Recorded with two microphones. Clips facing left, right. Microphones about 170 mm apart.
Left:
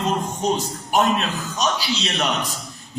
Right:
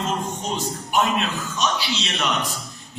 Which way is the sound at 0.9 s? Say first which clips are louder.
Left 3 dB; 40° left (ahead or behind).